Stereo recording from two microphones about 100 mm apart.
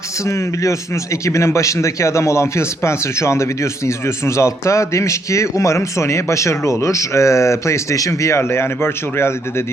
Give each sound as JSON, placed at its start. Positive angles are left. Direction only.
{"t": 0.3, "sound": "a man's voice", "side_deg": 30}